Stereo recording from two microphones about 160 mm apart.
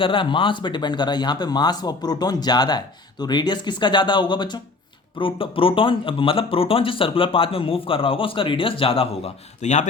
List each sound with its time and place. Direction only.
0.0 s speech: 30° left (ahead or behind)